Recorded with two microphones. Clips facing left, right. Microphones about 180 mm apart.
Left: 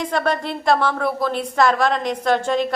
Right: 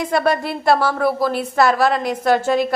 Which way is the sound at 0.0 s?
10° right (ahead or behind).